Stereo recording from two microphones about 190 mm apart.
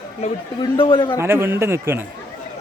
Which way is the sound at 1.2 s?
15° right (ahead or behind).